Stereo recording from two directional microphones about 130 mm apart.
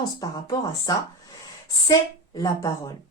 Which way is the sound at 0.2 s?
30° left (ahead or behind).